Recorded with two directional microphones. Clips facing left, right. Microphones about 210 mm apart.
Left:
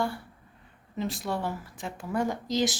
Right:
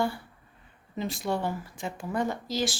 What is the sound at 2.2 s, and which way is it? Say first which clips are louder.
Speech: left 5 dB; 15° left (ahead or behind).